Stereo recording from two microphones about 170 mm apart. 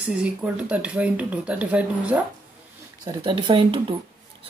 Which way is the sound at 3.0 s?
30° right (ahead or behind).